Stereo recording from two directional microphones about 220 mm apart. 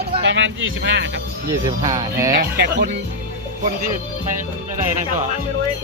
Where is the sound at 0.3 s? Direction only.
60° right (ahead or behind).